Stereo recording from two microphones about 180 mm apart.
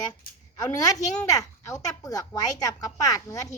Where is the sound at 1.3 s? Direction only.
20° left (ahead or behind).